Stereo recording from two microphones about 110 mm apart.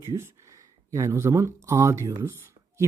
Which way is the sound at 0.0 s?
25° right (ahead or behind).